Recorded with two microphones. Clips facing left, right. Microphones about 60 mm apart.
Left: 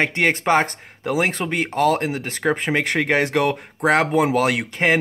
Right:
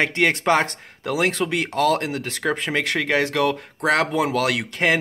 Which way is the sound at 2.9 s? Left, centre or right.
Left.